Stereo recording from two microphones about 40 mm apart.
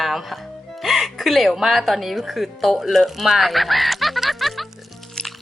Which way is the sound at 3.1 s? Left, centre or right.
Centre.